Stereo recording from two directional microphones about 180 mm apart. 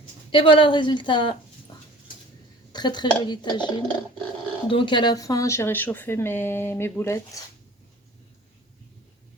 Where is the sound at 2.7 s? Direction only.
25° left (ahead or behind).